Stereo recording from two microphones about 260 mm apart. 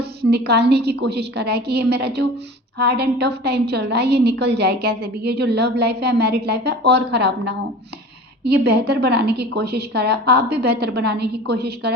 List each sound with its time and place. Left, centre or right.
0.2 s a woman's voice: right